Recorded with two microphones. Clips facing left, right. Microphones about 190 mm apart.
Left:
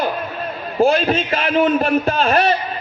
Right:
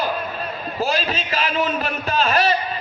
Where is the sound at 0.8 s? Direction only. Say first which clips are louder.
Left 9 dB; 55° left (ahead or behind).